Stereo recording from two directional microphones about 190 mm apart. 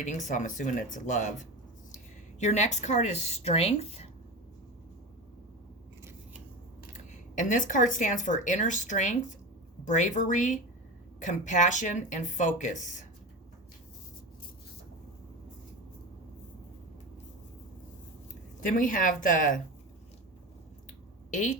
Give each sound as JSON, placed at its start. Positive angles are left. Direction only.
{"t": 0.0, "sound": "speech", "side_deg": 40}
{"t": 2.4, "sound": "speech", "side_deg": 40}
{"t": 6.9, "sound": "speech", "side_deg": 40}
{"t": 18.6, "sound": "speech", "side_deg": 45}
{"t": 21.2, "sound": "a sound", "side_deg": 40}